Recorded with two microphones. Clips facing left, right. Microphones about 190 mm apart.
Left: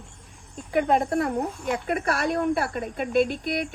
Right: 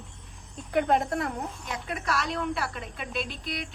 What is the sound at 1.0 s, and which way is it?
Speech, 55° left (ahead or behind).